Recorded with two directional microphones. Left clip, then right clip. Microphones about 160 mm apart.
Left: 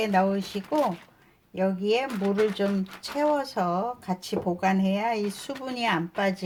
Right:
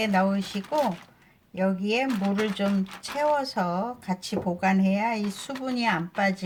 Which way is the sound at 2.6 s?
20° left (ahead or behind).